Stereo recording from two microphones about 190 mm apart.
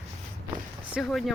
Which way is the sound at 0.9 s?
Centre (ahead or behind).